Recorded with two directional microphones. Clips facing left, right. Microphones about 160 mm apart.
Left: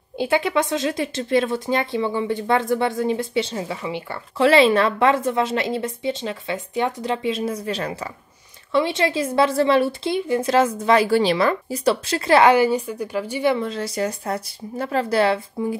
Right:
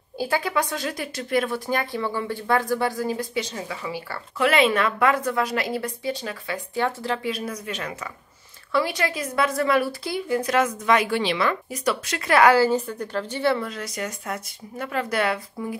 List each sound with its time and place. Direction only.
0.2 s speech: 20° left (ahead or behind)
13.7 s speech: 30° left (ahead or behind)